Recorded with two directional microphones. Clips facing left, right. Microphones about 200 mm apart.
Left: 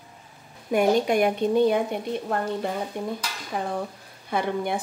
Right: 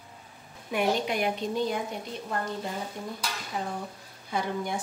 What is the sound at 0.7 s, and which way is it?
Dishes, 45° left (ahead or behind).